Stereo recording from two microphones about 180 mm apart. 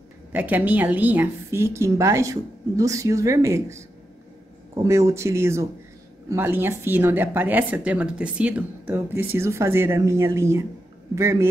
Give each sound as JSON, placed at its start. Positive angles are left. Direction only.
{"t": 0.3, "sound": "a woman's voice", "side_deg": -10}